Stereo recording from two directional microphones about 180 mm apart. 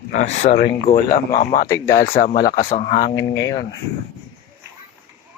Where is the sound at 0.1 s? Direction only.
45° left (ahead or behind).